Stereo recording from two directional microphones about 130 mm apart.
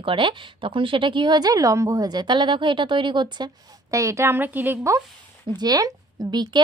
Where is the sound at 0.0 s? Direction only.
40° right (ahead or behind); by 4.8 s 15° right (ahead or behind).